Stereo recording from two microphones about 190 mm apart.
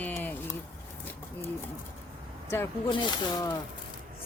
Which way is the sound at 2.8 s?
25° left (ahead or behind).